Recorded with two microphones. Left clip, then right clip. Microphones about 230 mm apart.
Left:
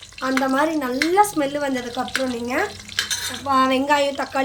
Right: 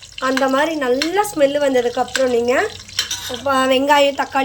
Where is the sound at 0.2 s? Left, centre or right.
Centre.